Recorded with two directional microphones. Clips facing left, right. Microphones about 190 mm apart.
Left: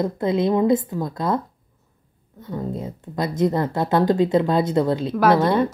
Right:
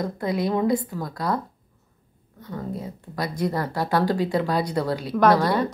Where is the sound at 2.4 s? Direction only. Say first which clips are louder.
Left 4 dB; 20° left (ahead or behind).